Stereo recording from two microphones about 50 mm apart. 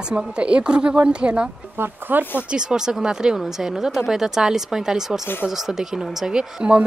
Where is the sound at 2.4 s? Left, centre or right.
Centre.